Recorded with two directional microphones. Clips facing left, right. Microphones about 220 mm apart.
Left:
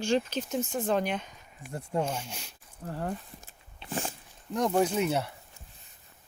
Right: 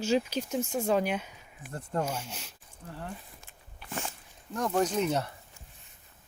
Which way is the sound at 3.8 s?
25° left (ahead or behind).